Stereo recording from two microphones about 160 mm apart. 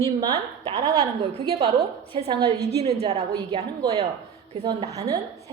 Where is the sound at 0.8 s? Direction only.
25° right (ahead or behind); by 3.2 s 40° right (ahead or behind).